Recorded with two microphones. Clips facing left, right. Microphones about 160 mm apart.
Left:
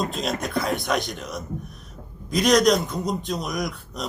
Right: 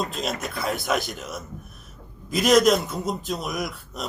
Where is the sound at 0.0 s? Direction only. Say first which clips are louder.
Left 2 dB; centre (ahead or behind).